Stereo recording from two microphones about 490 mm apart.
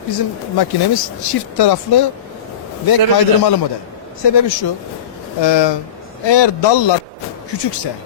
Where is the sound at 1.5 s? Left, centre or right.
Left.